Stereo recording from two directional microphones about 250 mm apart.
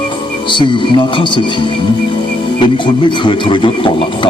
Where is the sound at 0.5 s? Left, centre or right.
Centre.